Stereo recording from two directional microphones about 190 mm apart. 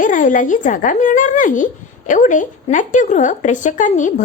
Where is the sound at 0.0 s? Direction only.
45° left (ahead or behind).